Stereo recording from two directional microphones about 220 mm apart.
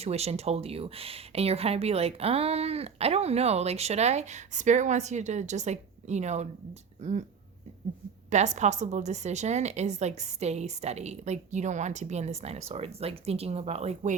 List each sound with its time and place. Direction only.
0.0 s a woman's voice: 30° right (ahead or behind)
8.3 s a woman's voice: 30° right (ahead or behind)